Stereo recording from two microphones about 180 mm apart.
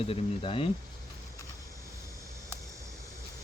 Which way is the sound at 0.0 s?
30° left (ahead or behind).